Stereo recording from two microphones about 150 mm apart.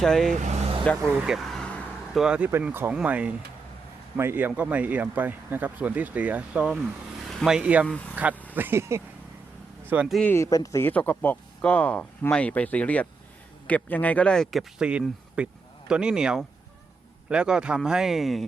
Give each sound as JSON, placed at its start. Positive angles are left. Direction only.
{"t": 0.0, "sound": "speech", "side_deg": 5}
{"t": 0.4, "sound": "vehicle", "side_deg": -50}
{"t": 1.2, "sound": "vehicle", "side_deg": 0}
{"t": 2.2, "sound": "speech", "side_deg": -10}
{"t": 7.9, "sound": "speech", "side_deg": 10}
{"t": 8.1, "sound": "speech", "side_deg": -10}
{"t": 10.1, "sound": "speech", "side_deg": 5}
{"t": 10.3, "sound": "speech", "side_deg": 20}